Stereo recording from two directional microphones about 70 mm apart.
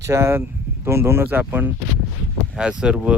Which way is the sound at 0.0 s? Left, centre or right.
Right.